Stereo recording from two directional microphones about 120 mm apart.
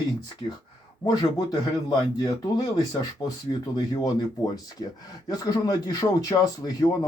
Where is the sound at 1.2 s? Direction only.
35° left (ahead or behind).